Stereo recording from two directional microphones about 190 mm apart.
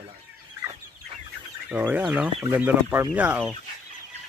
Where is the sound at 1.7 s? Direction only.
10° right (ahead or behind).